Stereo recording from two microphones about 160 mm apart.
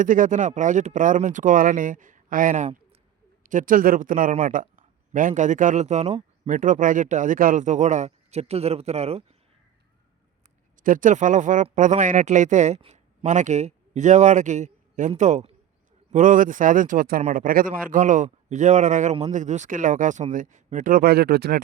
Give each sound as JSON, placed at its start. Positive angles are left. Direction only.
{"t": 0.0, "sound": "a man's voice", "side_deg": -55}
{"t": 10.8, "sound": "a man's voice", "side_deg": -55}